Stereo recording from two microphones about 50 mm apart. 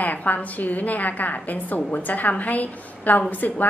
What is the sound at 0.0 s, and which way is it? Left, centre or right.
A woman's voice, left.